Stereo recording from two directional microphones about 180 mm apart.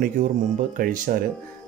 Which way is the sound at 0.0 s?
50° right (ahead or behind).